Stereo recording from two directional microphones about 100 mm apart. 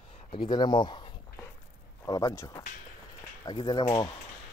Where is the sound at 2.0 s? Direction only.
40° left (ahead or behind).